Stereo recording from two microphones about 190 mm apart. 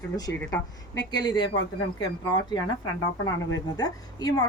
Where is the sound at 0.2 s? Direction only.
20° left (ahead or behind).